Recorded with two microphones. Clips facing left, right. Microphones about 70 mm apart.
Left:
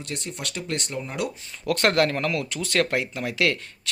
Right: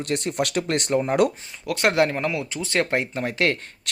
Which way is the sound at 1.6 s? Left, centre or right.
Centre.